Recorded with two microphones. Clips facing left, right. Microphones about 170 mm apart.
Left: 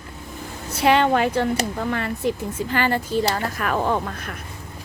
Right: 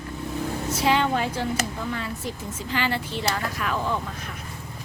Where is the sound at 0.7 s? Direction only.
60° left (ahead or behind).